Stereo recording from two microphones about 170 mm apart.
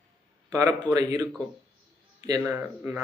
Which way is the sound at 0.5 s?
20° right (ahead or behind).